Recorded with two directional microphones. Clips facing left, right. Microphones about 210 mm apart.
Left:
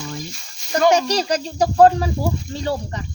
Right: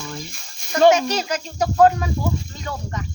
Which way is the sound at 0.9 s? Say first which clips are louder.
Left 3 dB; 35° left (ahead or behind).